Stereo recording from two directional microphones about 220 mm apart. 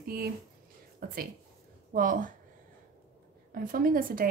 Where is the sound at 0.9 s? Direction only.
40° right (ahead or behind).